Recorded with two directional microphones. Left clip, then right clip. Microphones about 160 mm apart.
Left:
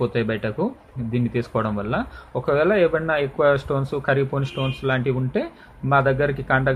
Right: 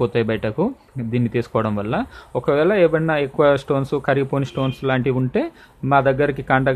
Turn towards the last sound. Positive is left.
turn(degrees=-50)  # may be behind; listen again after turning